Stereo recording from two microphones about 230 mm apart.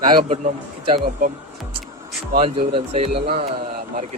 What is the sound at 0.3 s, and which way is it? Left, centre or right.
Speech, right.